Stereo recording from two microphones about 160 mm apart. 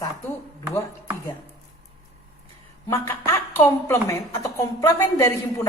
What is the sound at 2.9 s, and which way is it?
A woman's voice, 15° left (ahead or behind).